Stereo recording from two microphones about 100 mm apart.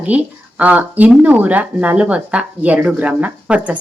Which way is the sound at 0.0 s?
15° right (ahead or behind).